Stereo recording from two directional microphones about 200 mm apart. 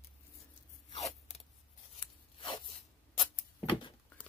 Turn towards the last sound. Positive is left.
turn(degrees=25)  # may be behind; listen again after turning